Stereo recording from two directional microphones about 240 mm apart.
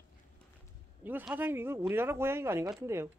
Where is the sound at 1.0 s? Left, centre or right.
Centre.